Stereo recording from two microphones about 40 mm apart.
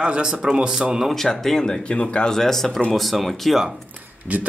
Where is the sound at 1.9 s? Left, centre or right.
Left.